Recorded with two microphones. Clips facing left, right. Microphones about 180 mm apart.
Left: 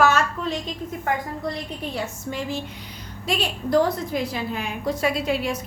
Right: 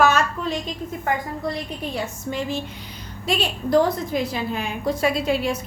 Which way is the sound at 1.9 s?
20° right (ahead or behind).